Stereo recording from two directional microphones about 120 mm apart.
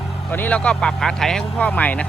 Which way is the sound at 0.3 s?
15° left (ahead or behind).